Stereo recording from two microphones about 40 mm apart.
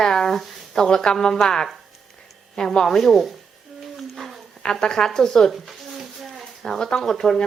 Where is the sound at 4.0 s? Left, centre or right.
Centre.